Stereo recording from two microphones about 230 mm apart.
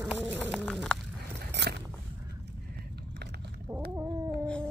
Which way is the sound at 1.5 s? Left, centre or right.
Right.